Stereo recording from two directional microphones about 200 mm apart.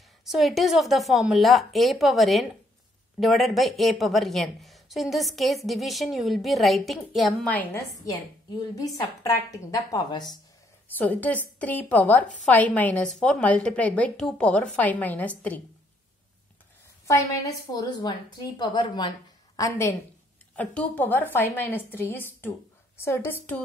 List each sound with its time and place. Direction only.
0.2 s a woman's voice: centre (ahead or behind); by 10.4 s 20° left (ahead or behind)
11.0 s a woman's voice: 10° left (ahead or behind)
17.1 s a woman's voice: 15° left (ahead or behind)